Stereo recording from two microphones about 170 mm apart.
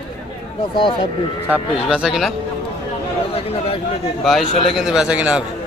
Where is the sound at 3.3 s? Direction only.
35° left (ahead or behind).